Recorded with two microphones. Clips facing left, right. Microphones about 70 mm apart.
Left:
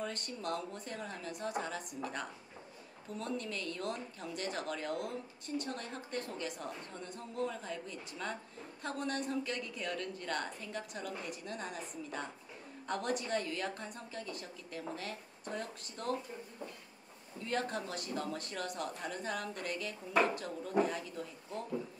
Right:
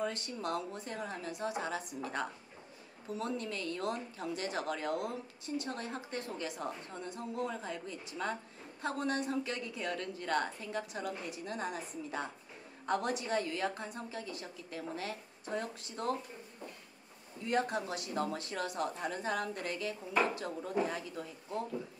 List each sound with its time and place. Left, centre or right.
0.0 s a woman's voice: right
3.2 s a woman's voice: right
17.5 s a woman's voice: centre
18.1 s a woman's voice: right